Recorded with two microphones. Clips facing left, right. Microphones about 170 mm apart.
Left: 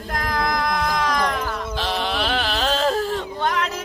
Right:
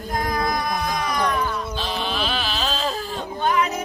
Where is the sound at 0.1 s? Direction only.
90° left; by 3.6 s 75° left (ahead or behind).